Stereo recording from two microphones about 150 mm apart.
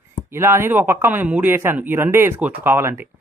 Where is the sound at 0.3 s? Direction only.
15° right (ahead or behind).